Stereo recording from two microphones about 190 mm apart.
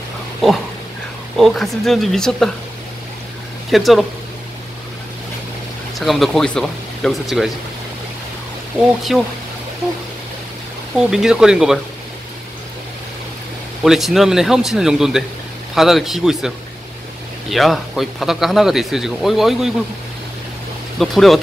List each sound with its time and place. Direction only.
1.3 s speech: centre (ahead or behind)
3.7 s speech: centre (ahead or behind)
5.9 s speech: centre (ahead or behind)
9.1 s speech: centre (ahead or behind)
11.0 s speech: centre (ahead or behind)
13.8 s speech: centre (ahead or behind)
21.0 s speech: centre (ahead or behind)